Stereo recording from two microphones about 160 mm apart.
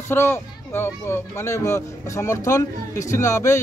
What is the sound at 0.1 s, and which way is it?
Speech, 15° left (ahead or behind).